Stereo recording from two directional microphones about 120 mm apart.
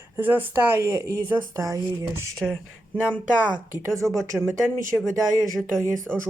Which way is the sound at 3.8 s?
25° right (ahead or behind).